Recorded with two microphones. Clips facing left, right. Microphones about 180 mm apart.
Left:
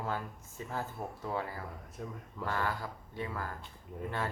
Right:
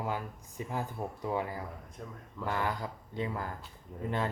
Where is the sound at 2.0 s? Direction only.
5° left (ahead or behind).